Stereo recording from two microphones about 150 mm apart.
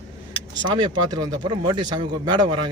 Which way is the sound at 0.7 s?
30° right (ahead or behind).